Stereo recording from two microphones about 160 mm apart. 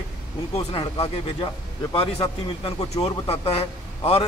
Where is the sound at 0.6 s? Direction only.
35° left (ahead or behind).